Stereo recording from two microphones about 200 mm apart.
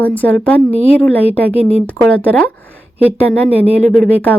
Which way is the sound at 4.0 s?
10° left (ahead or behind).